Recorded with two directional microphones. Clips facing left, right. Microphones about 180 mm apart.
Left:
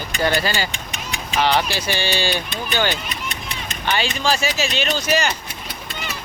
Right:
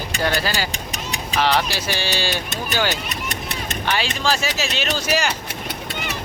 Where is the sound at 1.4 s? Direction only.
Centre (ahead or behind).